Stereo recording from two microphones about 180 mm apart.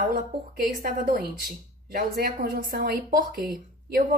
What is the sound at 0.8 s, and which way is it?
A woman's voice, 55° right (ahead or behind).